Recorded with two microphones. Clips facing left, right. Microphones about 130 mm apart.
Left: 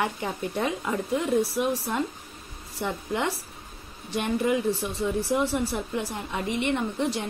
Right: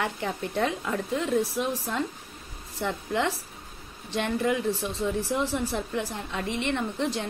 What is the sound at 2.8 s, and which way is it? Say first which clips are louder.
A woman's voice: right 1 dB; 15° left (ahead or behind).